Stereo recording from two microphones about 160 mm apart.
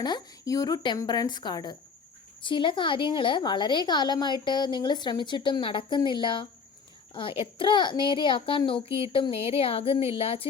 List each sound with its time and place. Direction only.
0.0 s a woman's voice: 25° left (ahead or behind)